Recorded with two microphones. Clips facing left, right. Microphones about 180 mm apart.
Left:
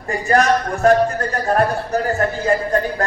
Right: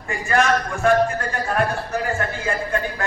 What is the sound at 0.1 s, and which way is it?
Speech, 40° left (ahead or behind).